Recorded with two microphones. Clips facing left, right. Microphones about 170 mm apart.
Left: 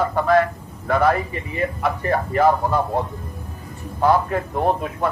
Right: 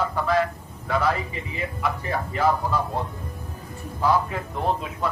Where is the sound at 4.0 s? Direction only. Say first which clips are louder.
Left 5 dB; 55° left (ahead or behind).